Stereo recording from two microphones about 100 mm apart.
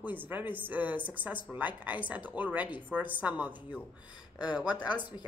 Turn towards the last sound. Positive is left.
turn(degrees=45)  # may be behind; listen again after turning